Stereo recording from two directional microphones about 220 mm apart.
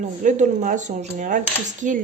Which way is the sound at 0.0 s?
35° right (ahead or behind).